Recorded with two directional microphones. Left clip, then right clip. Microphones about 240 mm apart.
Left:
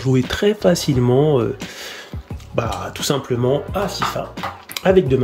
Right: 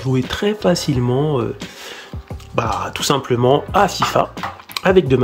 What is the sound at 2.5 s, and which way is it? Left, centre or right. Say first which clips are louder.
Speech: right 3 dB; centre.